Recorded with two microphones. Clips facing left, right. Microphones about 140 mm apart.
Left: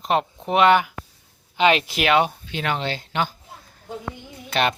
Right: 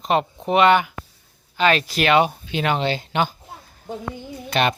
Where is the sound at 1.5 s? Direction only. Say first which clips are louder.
Even; 20° left (ahead or behind).